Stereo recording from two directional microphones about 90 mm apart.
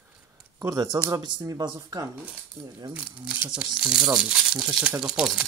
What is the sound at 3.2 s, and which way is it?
Speech, 10° right (ahead or behind).